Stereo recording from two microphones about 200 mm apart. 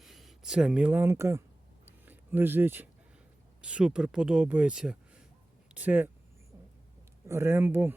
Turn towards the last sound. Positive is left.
turn(degrees=-10)  # may be behind; listen again after turning